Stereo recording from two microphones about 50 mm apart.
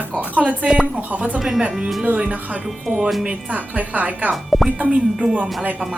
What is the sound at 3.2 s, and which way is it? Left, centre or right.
Speech, right.